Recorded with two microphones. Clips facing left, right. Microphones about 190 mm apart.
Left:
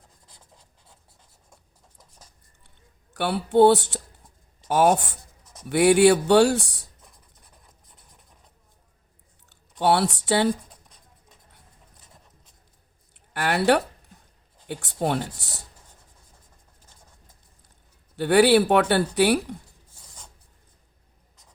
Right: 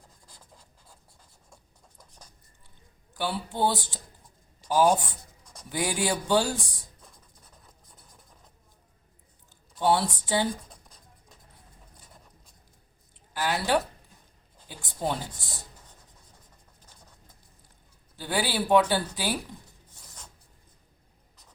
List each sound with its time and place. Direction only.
3.1 s speech: 70° left (ahead or behind)
5.4 s a sound: 5° left (ahead or behind)
5.6 s speech: 70° left (ahead or behind)
9.5 s speech: 70° left (ahead or behind)
13.3 s speech: 65° left (ahead or behind)
18.2 s speech: 65° left (ahead or behind)